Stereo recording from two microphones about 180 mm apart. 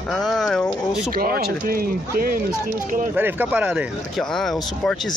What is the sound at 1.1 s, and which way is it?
Speech, 55° right (ahead or behind).